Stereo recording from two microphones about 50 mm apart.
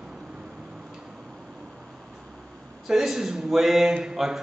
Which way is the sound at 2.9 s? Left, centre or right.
Centre.